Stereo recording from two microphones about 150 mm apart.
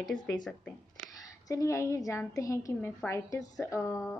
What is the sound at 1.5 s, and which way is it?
A woman's voice, 20° left (ahead or behind).